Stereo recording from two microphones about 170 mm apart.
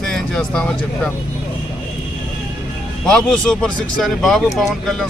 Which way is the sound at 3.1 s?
5° left (ahead or behind).